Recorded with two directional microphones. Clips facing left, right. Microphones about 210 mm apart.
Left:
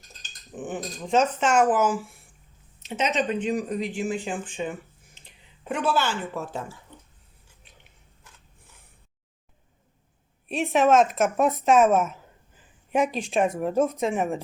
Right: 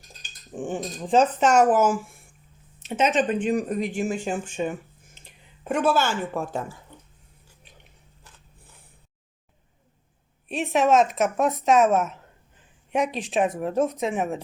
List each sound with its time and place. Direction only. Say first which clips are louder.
0.5 s speech: right 3 dB; 30° right (ahead or behind); by 6.6 s 50° right (ahead or behind)
10.5 s speech: left 1 dB; centre (ahead or behind)